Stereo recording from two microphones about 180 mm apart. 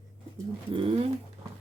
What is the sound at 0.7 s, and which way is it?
Speech, 30° right (ahead or behind).